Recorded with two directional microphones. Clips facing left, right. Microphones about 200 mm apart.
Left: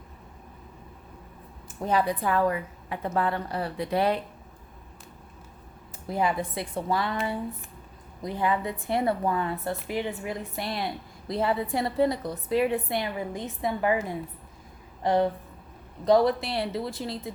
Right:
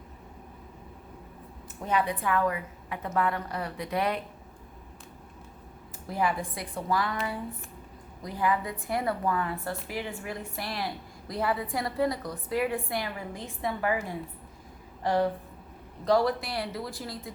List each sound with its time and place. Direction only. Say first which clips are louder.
1.9 s a woman's voice: left 2 dB; 35° left (ahead or behind)
6.1 s a woman's voice: left 2 dB; 25° left (ahead or behind)